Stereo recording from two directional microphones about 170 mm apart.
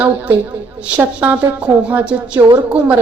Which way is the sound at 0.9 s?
10° right (ahead or behind).